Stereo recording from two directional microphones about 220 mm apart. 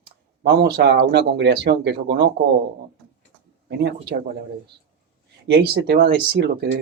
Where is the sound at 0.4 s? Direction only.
45° right (ahead or behind).